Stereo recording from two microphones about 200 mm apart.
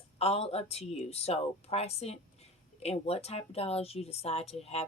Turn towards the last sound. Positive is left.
turn(degrees=30)  # may be behind; listen again after turning